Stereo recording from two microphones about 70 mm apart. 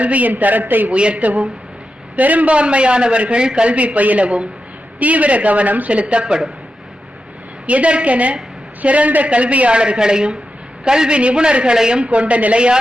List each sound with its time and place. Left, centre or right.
0.0 s a man's voice: right
7.7 s a man's voice: centre